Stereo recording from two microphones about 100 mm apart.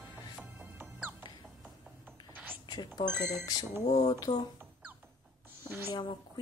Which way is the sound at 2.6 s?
45° left (ahead or behind).